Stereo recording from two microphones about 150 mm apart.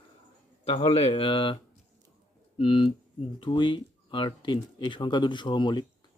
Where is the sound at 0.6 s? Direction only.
40° left (ahead or behind).